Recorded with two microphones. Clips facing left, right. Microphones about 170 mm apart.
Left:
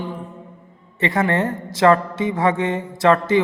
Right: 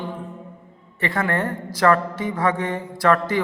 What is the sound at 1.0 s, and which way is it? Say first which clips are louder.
Speech: left 4 dB; 20° left (ahead or behind).